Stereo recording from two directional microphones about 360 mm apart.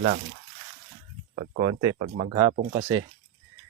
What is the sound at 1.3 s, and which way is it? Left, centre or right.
Speech, right.